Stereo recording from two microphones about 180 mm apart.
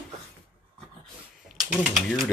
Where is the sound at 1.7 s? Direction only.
Centre (ahead or behind).